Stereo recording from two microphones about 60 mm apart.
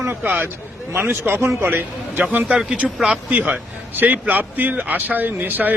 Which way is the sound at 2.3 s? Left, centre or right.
Right.